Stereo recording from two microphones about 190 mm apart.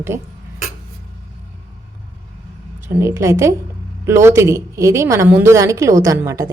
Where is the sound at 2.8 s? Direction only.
15° right (ahead or behind).